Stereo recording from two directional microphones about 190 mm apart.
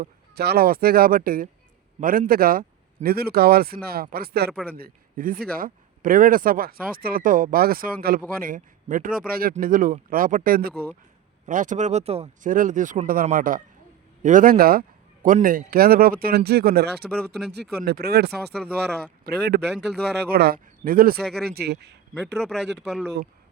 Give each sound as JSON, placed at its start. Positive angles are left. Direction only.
{"t": 0.0, "sound": "a man's voice", "side_deg": -55}
{"t": 17.1, "sound": "speech", "side_deg": 0}
{"t": 17.5, "sound": "speech", "side_deg": -60}
{"t": 18.5, "sound": "speech", "side_deg": 5}
{"t": 19.2, "sound": "a man's voice", "side_deg": -60}
{"t": 21.2, "sound": "speech", "side_deg": 0}
{"t": 21.4, "sound": "speech", "side_deg": -60}
{"t": 22.4, "sound": "speech", "side_deg": 0}